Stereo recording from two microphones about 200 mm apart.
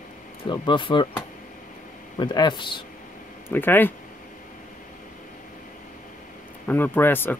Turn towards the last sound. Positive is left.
turn(degrees=10)  # may be behind; listen again after turning